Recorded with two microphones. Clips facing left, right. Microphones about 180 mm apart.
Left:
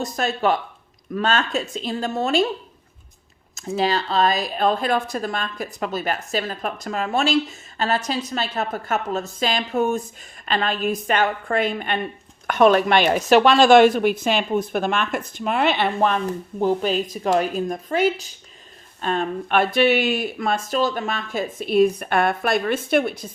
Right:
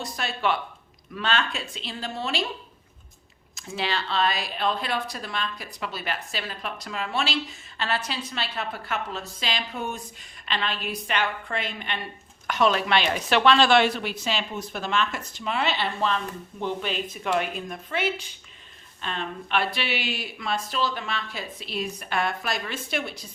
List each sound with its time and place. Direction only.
0.0 s speech: 45° left (ahead or behind)
3.5 s speech: 40° left (ahead or behind)